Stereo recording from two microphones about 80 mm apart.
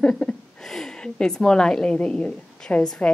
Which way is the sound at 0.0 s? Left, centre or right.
Centre.